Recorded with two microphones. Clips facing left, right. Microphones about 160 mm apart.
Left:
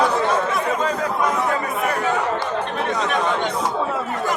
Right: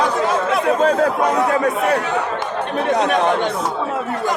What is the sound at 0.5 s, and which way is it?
Chatter, 70° right (ahead or behind).